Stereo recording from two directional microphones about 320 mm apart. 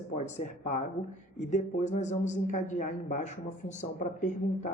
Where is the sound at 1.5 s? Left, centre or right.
Left.